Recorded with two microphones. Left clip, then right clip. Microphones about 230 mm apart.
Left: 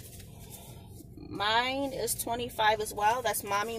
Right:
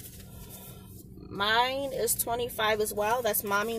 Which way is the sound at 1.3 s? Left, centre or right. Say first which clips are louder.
Right 2 dB; centre.